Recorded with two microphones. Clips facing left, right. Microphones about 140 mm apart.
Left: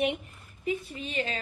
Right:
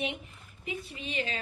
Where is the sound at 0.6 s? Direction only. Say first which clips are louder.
Left 6 dB; 40° left (ahead or behind).